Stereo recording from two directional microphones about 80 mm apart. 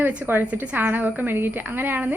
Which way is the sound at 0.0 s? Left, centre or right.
Right.